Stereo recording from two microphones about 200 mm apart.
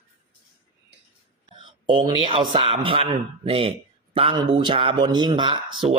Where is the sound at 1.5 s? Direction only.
25° right (ahead or behind).